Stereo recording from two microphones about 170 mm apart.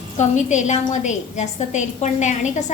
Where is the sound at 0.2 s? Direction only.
45° left (ahead or behind).